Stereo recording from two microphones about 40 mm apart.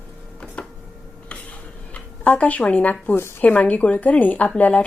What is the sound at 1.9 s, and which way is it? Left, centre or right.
Speech, left.